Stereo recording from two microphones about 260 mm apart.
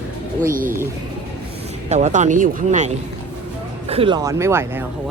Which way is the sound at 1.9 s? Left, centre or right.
Right.